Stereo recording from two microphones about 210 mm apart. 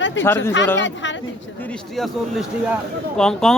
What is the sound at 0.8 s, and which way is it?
Speech, 60° left (ahead or behind).